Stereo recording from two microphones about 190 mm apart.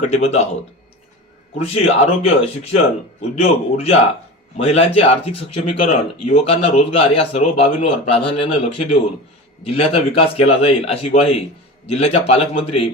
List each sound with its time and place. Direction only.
0.1 s a man's voice: 35° left (ahead or behind)
1.5 s a man's voice: 35° left (ahead or behind)